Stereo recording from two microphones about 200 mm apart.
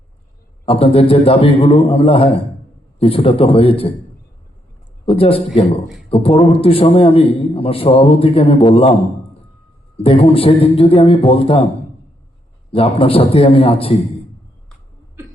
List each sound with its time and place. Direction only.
0.6 s a man's voice: 30° left (ahead or behind)
5.0 s a man's voice: 30° left (ahead or behind)
10.0 s a man's voice: 30° left (ahead or behind)
12.7 s a man's voice: 30° left (ahead or behind)
15.2 s cough: 15° right (ahead or behind)